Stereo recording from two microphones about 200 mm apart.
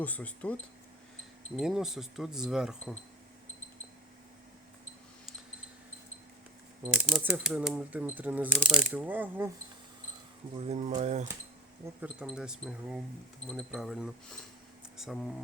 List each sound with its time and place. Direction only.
0.0 s speech: 10° left (ahead or behind)
6.9 s speech: 5° right (ahead or behind)
10.5 s speech: 30° right (ahead or behind)
12.0 s speech: 5° right (ahead or behind)